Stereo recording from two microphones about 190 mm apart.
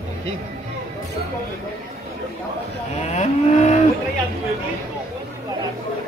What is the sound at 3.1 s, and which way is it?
Vehicle, 35° left (ahead or behind).